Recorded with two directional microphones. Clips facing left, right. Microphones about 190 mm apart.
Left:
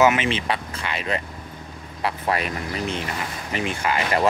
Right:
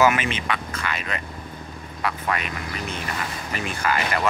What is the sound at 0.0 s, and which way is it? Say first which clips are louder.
Speech: left 2 dB; 25° left (ahead or behind).